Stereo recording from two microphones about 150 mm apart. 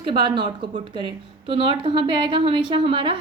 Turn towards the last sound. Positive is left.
turn(degrees=-35)  # may be behind; listen again after turning